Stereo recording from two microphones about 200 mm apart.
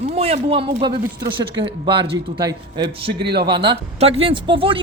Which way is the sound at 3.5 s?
25° right (ahead or behind).